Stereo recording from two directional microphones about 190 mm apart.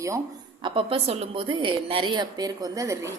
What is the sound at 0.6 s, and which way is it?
A woman's voice, 25° right (ahead or behind).